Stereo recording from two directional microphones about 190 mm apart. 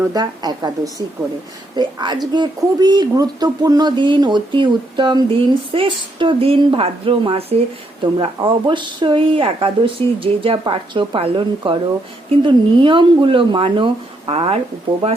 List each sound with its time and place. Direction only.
0.1 s speech: 20° right (ahead or behind)